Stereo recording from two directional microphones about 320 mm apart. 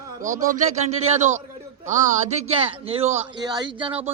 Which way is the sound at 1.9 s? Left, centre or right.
Right.